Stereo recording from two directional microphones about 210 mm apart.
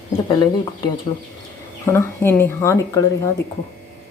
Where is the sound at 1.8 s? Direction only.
10° left (ahead or behind).